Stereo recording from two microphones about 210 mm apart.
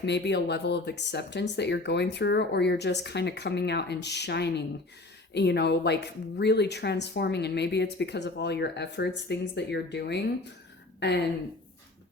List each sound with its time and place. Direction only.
0.0 s speech: 55° left (ahead or behind)